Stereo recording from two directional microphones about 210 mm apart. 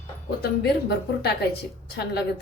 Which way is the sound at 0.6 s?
50° left (ahead or behind).